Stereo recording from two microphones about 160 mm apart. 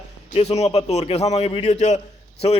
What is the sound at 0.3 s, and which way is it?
A man's voice, 40° left (ahead or behind).